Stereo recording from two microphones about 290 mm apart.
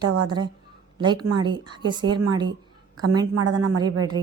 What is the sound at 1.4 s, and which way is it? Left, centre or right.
Speech, centre.